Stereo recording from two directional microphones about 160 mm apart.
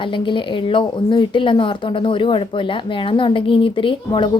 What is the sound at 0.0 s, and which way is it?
A woman's voice, 30° left (ahead or behind).